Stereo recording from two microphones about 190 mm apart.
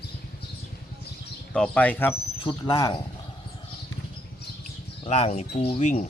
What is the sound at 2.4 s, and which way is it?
Speech, 25° left (ahead or behind).